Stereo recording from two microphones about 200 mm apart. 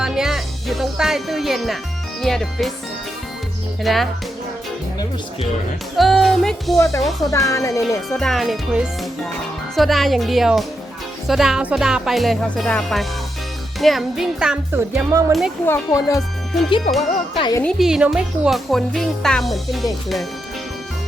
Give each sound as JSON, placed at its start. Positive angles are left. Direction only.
{"t": 0.0, "sound": "music", "side_deg": 0}
{"t": 2.2, "sound": "speech", "side_deg": 0}
{"t": 3.8, "sound": "speech", "side_deg": 0}
{"t": 6.0, "sound": "speech", "side_deg": 0}
{"t": 7.3, "sound": "speech", "side_deg": 15}
{"t": 8.2, "sound": "speech", "side_deg": 0}
{"t": 15.3, "sound": "speech", "side_deg": 0}
{"t": 15.6, "sound": "speech", "side_deg": 15}
{"t": 16.9, "sound": "speech", "side_deg": 30}
{"t": 17.6, "sound": "speech", "side_deg": 0}